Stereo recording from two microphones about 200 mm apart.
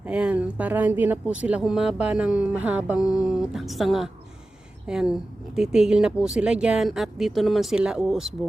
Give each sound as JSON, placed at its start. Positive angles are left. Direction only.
{"t": 0.0, "sound": "speech", "side_deg": -5}